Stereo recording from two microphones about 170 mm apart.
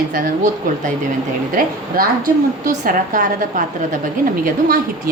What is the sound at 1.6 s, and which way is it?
A woman's voice, 55° right (ahead or behind).